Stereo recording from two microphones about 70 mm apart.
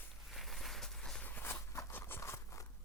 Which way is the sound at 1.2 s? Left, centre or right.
Left.